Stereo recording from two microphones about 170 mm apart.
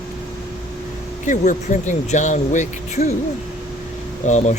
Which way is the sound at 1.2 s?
50° left (ahead or behind).